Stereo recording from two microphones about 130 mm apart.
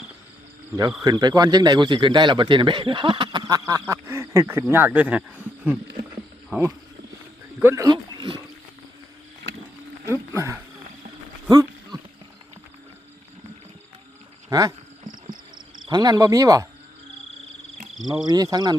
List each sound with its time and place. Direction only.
1.0 s speech: 30° right (ahead or behind)
7.9 s a sound: 35° right (ahead or behind)
10.1 s a sound: 20° right (ahead or behind)
14.5 s insect: 30° right (ahead or behind)
15.9 s speech: 30° right (ahead or behind)
18.5 s speech: 30° right (ahead or behind)